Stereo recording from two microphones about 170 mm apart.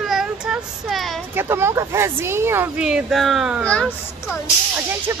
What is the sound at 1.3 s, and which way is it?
A woman's voice, 15° right (ahead or behind).